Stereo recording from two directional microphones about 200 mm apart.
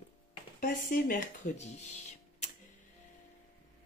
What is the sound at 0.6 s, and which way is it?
Speech, 45° left (ahead or behind).